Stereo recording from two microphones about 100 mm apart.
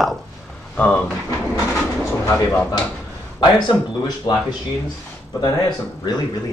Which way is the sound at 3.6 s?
45° left (ahead or behind).